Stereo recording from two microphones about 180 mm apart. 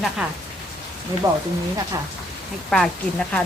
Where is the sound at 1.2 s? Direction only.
20° right (ahead or behind).